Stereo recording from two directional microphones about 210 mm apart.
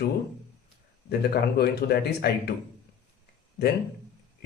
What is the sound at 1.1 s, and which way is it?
Speech, 50° left (ahead or behind).